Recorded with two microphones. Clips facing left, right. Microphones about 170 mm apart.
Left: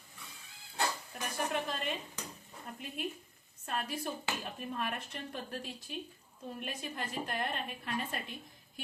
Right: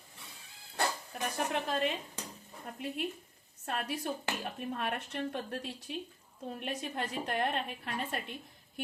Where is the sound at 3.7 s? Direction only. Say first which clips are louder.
Right 2 dB; 65° right (ahead or behind).